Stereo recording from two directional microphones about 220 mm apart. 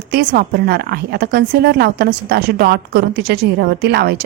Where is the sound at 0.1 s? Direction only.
45° right (ahead or behind).